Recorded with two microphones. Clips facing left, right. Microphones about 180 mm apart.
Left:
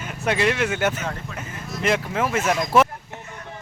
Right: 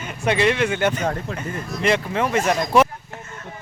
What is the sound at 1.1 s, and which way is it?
Speech, 50° right (ahead or behind).